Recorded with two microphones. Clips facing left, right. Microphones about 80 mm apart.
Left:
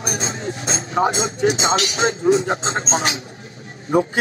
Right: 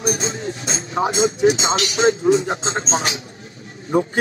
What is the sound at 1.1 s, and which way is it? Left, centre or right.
Speech, left.